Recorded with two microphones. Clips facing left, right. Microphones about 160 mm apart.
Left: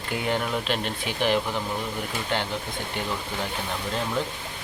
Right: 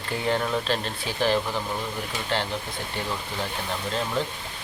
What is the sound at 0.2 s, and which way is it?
Speech, 10° left (ahead or behind).